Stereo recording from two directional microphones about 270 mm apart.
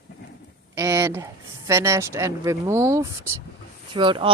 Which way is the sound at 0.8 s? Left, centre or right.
Centre.